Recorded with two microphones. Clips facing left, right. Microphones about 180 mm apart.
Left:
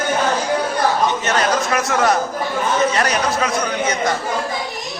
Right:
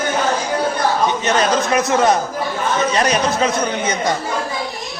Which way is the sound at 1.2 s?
20° right (ahead or behind).